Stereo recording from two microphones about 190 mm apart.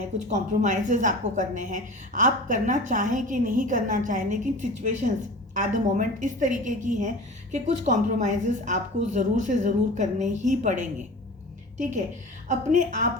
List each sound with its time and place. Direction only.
0.2 s a woman's voice: 40° right (ahead or behind)